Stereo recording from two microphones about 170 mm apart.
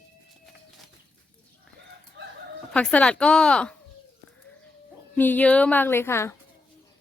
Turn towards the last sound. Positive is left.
turn(degrees=15)  # may be behind; listen again after turning